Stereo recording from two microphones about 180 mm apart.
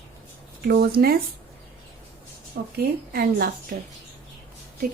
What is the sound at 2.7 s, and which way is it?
Speech, 55° right (ahead or behind).